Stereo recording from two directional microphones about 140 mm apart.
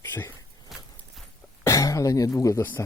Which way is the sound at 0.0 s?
15° left (ahead or behind).